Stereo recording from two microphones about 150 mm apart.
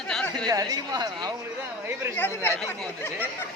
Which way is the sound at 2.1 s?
15° left (ahead or behind).